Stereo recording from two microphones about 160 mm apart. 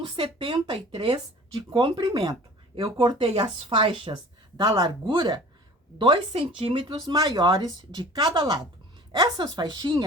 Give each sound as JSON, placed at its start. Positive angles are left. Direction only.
{"t": 0.0, "sound": "speech", "side_deg": -30}